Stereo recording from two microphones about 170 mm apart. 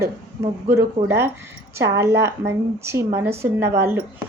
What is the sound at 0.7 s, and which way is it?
Speech, 15° right (ahead or behind).